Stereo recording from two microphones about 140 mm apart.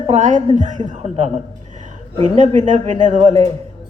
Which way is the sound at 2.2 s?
60° right (ahead or behind).